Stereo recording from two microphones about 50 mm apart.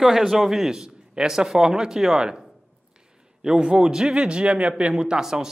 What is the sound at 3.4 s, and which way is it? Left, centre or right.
A man's voice, centre.